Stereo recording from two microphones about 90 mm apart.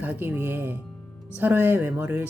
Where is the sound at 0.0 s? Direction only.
20° right (ahead or behind).